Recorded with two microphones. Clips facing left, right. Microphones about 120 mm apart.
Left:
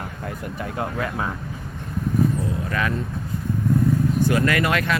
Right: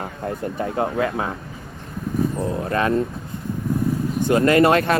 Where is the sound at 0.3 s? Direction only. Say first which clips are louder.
Right 7 dB; 30° right (ahead or behind).